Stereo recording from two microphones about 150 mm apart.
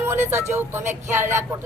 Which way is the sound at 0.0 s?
15° right (ahead or behind).